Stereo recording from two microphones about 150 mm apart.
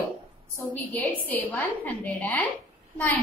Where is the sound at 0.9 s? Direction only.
10° left (ahead or behind).